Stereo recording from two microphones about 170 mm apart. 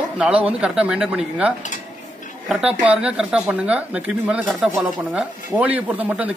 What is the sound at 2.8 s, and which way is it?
Speech, 5° right (ahead or behind).